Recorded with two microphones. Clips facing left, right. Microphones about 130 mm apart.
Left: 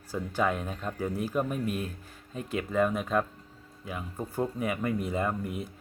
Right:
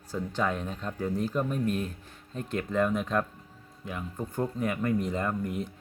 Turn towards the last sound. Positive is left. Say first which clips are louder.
# even
turn(degrees=5)  # may be behind; listen again after turning